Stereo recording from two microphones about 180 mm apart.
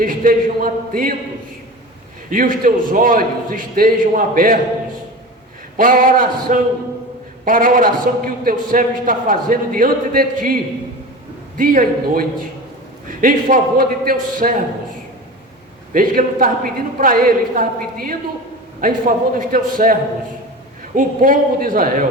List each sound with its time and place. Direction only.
0.0 s a man's voice: 50° right (ahead or behind)
2.3 s a man's voice: 50° right (ahead or behind)
5.7 s a man's voice: 50° right (ahead or behind)
15.9 s a man's voice: 50° right (ahead or behind)